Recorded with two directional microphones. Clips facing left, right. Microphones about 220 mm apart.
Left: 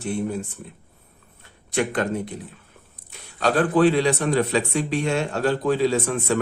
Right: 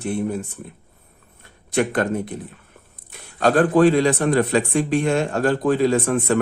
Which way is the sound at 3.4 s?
45° right (ahead or behind).